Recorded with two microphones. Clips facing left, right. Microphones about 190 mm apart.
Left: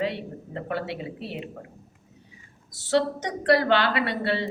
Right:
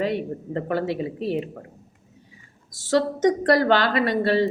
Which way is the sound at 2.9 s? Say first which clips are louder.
Right 5 dB; 45° right (ahead or behind).